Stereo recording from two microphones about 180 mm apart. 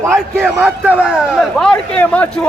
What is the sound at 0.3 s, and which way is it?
Speech, centre (ahead or behind).